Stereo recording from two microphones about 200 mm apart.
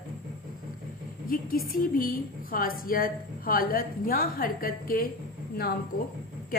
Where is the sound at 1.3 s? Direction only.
45° left (ahead or behind).